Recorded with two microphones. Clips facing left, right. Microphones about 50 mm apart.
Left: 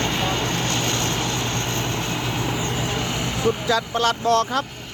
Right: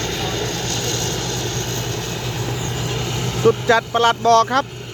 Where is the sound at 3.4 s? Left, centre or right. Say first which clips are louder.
Right 7 dB; right.